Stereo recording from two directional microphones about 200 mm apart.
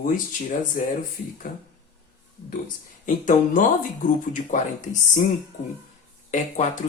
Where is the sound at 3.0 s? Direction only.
40° left (ahead or behind).